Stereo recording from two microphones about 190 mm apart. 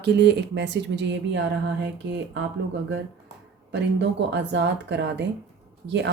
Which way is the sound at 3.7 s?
65° right (ahead or behind).